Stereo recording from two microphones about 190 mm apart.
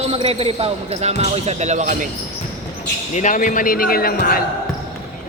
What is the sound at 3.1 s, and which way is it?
Speech, 40° left (ahead or behind).